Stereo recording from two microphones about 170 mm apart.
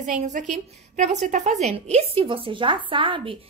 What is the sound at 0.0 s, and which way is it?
A woman's voice, 50° right (ahead or behind).